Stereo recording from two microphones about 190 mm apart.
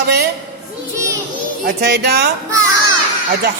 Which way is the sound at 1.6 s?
55° right (ahead or behind).